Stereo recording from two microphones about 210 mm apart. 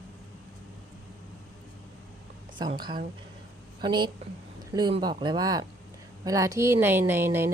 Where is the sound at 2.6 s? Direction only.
20° right (ahead or behind).